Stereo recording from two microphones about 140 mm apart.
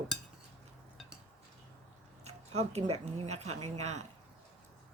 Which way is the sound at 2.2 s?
50° right (ahead or behind).